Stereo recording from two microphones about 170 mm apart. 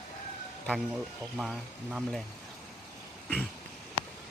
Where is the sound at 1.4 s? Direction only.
Centre (ahead or behind).